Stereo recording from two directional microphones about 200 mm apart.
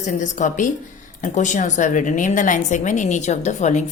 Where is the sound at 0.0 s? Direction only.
35° left (ahead or behind).